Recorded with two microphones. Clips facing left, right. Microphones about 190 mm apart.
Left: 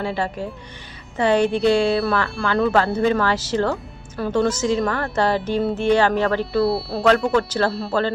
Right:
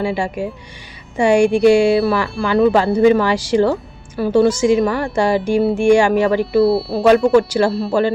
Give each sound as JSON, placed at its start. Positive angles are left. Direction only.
{"t": 0.0, "sound": "a woman's voice", "side_deg": -10}
{"t": 6.6, "sound": "speech", "side_deg": 0}
{"t": 7.3, "sound": "a woman's voice", "side_deg": -10}
{"t": 7.7, "sound": "speech", "side_deg": 0}